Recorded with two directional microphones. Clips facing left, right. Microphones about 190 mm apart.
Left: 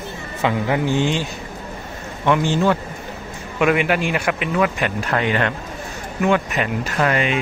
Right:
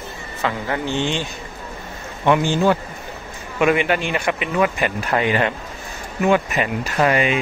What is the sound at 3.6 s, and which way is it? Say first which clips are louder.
Speech: even; centre (ahead or behind).